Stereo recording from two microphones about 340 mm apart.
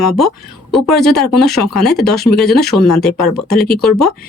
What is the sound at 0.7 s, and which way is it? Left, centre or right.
Speech, centre.